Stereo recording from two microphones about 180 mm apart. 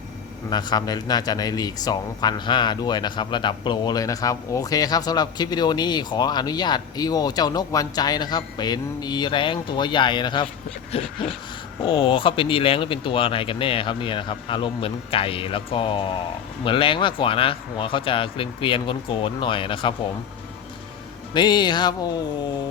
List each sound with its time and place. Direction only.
0.5 s a man's voice: 25° left (ahead or behind)
21.3 s a man's voice: 25° left (ahead or behind)